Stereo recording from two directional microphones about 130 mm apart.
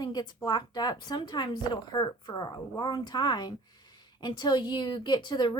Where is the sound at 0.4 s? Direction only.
35° left (ahead or behind).